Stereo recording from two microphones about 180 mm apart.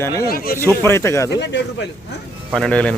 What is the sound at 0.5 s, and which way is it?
Speech, 15° left (ahead or behind).